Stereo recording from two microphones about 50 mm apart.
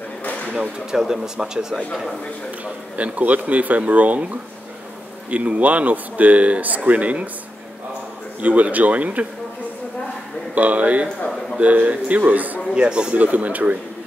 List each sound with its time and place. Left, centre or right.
0.9 s speech: centre
2.6 s speech: right
5.3 s speech: right
8.4 s speech: right
10.5 s speech: right
12.7 s speech: centre
13.2 s speech: right